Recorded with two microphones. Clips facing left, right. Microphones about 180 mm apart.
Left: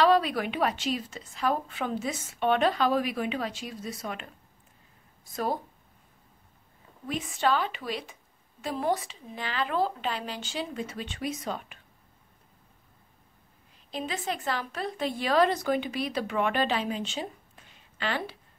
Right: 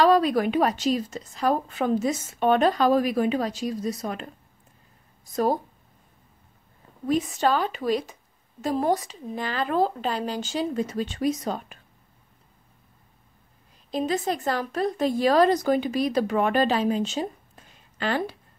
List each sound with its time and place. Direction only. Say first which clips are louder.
0.0 s a woman's voice: right 4 dB; 40° right (ahead or behind)
5.3 s a woman's voice: right 7 dB; 40° right (ahead or behind)
7.1 s a woman's voice: right 5 dB; 40° right (ahead or behind)
13.8 s a woman's voice: right 7 dB; 40° right (ahead or behind)